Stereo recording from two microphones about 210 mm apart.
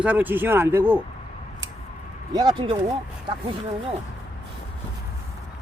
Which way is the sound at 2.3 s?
20° right (ahead or behind).